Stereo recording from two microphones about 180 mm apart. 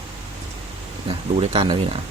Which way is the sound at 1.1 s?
30° right (ahead or behind).